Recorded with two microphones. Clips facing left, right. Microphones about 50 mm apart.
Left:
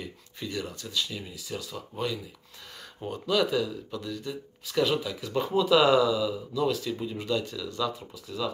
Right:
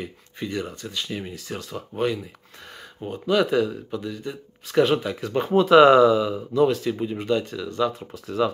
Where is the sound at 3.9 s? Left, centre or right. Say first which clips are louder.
Right 4 dB; right.